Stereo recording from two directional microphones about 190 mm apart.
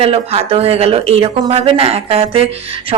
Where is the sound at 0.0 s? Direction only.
30° right (ahead or behind).